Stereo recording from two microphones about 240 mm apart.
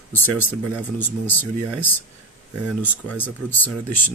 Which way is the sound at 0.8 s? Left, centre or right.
Centre.